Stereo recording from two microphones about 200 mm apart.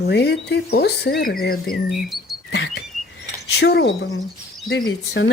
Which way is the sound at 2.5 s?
55° left (ahead or behind).